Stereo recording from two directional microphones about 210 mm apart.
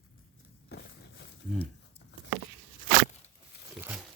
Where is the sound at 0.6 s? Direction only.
50° left (ahead or behind).